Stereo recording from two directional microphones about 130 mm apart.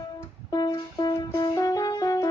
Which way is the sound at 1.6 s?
30° left (ahead or behind).